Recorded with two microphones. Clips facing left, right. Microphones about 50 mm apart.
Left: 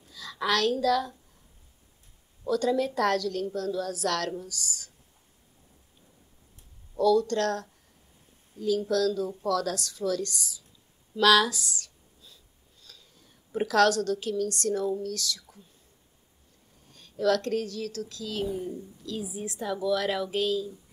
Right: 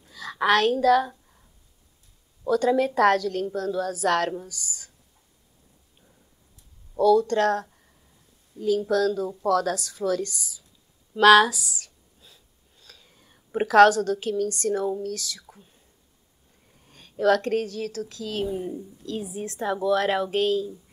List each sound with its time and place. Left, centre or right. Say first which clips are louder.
0.1 s a woman's voice: right 6 dB; right
2.4 s a woman's voice: right 4 dB; right
7.0 s a woman's voice: right 4 dB; right
11.5 s speech: right 1 dB; centre
12.8 s a woman's voice: right 2 dB; right
15.5 s whispering: right 3 dB; right
16.9 s a woman's voice: right 4 dB; right
19.2 s a woman's voice: right 4 dB; right
19.7 s speech: right 5 dB; right